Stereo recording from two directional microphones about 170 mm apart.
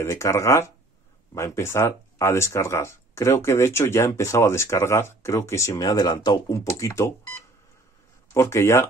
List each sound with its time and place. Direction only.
0.0 s speech: 15° left (ahead or behind)
8.3 s speech: 15° left (ahead or behind)